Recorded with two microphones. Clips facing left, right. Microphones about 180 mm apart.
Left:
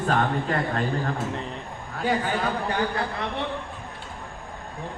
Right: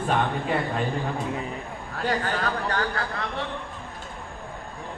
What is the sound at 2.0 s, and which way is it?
Speech, 5° left (ahead or behind).